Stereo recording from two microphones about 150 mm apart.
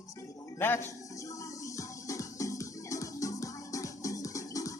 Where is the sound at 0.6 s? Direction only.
15° left (ahead or behind).